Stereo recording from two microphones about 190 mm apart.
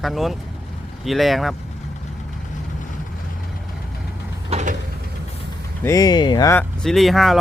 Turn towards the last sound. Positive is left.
turn(degrees=0)  # may be behind; listen again after turning